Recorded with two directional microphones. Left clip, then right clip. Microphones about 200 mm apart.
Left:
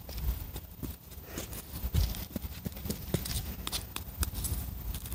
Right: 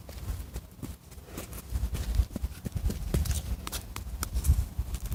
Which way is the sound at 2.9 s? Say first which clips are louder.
Even; centre (ahead or behind).